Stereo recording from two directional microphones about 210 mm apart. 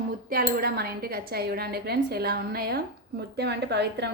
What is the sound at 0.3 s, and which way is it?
A woman's voice, 45° right (ahead or behind).